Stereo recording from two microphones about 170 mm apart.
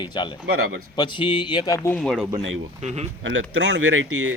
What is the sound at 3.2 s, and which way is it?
Speech, 90° right.